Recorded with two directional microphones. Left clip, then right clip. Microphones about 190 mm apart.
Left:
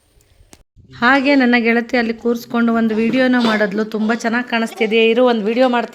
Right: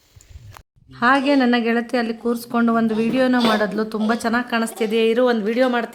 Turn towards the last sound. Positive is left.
turn(degrees=10)  # may be behind; listen again after turning